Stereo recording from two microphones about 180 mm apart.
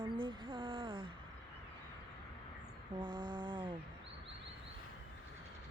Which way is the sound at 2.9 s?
25° right (ahead or behind).